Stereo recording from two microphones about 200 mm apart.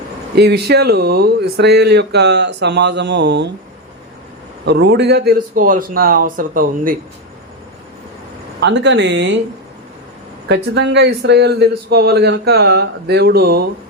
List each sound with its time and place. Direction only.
0.3 s speech: 55° right (ahead or behind)
4.6 s a man's voice: 55° right (ahead or behind)
8.6 s speech: 60° right (ahead or behind)
10.5 s a man's voice: 55° right (ahead or behind)